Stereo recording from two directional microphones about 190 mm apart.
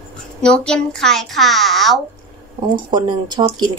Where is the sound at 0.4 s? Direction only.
5° left (ahead or behind).